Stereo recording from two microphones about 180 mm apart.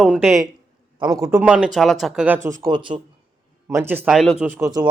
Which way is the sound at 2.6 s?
25° right (ahead or behind).